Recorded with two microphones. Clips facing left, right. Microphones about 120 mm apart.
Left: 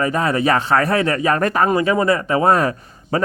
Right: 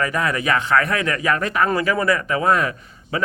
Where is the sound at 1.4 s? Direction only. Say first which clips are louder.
Left 4 dB; 50° left (ahead or behind).